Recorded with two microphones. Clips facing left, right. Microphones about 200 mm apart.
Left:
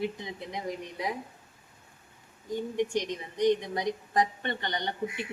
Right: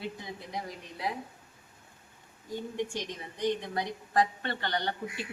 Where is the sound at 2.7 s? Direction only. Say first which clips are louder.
Left 7 dB; 20° left (ahead or behind).